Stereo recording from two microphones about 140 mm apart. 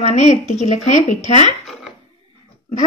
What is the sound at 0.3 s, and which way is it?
A woman's voice, 50° left (ahead or behind).